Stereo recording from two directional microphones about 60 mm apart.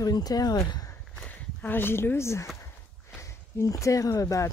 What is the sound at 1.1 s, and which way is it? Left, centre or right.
Speech, left.